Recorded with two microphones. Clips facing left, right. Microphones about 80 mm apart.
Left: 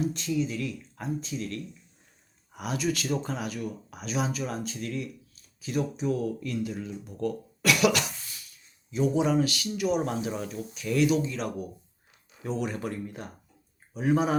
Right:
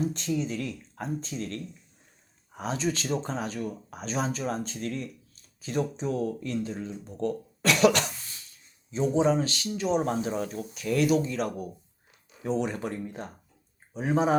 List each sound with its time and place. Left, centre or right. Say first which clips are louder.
0.0 s speech: left 1 dB; right